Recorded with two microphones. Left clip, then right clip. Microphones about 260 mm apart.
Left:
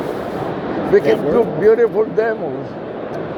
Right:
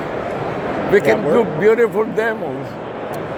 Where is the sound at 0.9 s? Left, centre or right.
Right.